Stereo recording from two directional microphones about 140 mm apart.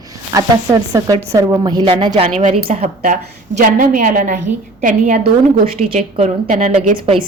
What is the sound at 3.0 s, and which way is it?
A woman's voice, 75° right (ahead or behind).